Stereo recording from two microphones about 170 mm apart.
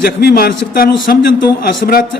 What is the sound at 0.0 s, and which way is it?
Speech, 65° left (ahead or behind).